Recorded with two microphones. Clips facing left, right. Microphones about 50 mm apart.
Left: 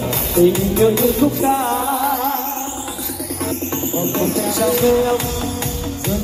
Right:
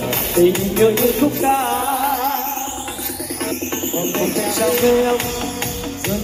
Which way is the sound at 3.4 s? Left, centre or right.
Right.